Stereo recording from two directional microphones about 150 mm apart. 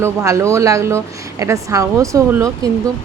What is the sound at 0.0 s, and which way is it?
A woman's voice, 20° right (ahead or behind).